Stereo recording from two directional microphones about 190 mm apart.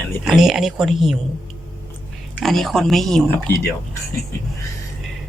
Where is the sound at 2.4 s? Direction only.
Centre (ahead or behind).